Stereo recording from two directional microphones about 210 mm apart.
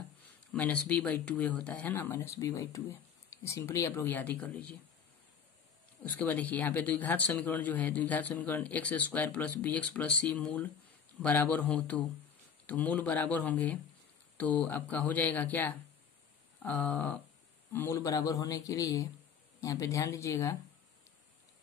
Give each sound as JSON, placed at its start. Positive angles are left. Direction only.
{"t": 0.5, "sound": "speech", "side_deg": 5}
{"t": 6.0, "sound": "speech", "side_deg": 5}
{"t": 16.6, "sound": "a sound", "side_deg": 5}
{"t": 17.7, "sound": "speech", "side_deg": 15}